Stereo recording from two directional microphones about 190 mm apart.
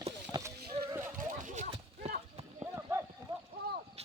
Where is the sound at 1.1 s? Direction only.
40° right (ahead or behind).